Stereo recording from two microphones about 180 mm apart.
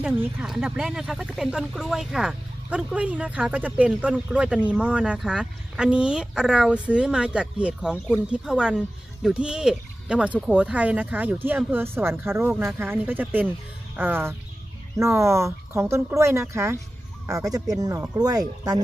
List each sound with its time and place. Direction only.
0.0 s speech: 5° right (ahead or behind); by 18.8 s 20° right (ahead or behind)